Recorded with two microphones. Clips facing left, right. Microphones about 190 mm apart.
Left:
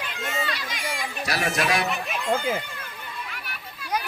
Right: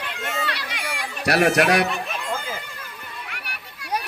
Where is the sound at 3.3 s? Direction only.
70° right (ahead or behind).